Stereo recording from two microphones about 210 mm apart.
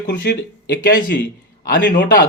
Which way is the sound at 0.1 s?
50° left (ahead or behind).